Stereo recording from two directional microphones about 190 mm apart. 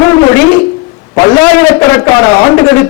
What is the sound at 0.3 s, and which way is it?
A man's voice, 10° left (ahead or behind).